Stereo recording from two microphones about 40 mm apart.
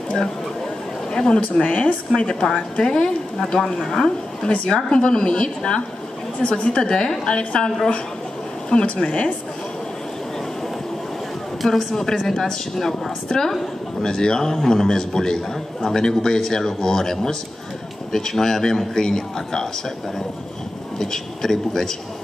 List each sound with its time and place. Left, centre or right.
1.1 s a woman's voice: centre
1.4 s a woman's voice: left
11.6 s a man's voice: centre
21.0 s a man's voice: centre